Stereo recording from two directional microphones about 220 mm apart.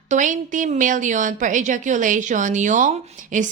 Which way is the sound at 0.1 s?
35° right (ahead or behind).